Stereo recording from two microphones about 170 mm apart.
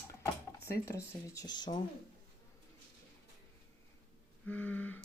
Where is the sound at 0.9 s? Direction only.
15° left (ahead or behind).